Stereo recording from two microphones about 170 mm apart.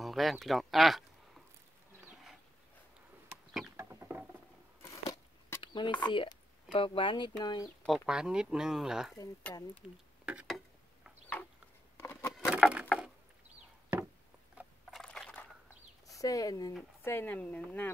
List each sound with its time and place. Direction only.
0.0 s speech: centre (ahead or behind)
3.7 s rodents: 15° right (ahead or behind)
4.8 s a sound: 15° left (ahead or behind)
7.8 s speech: centre (ahead or behind)
10.2 s a sound: 5° right (ahead or behind)
12.0 s patter: 15° left (ahead or behind)
12.4 s patter: 5° right (ahead or behind)
12.8 s mechanisms: centre (ahead or behind)
14.6 s a sound: centre (ahead or behind)
16.2 s speech: 20° left (ahead or behind)